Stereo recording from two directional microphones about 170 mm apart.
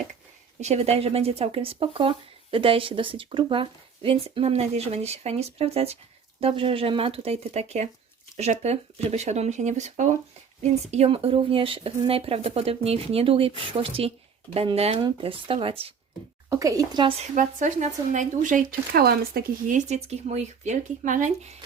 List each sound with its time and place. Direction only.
0.6 s speech: 40° right (ahead or behind)
16.5 s a woman's voice: 20° right (ahead or behind)
17.3 s speech: 45° right (ahead or behind)